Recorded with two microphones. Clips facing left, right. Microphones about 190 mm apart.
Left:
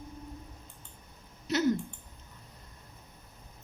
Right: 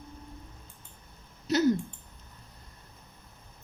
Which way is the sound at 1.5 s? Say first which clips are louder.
Right 4 dB; 35° right (ahead or behind).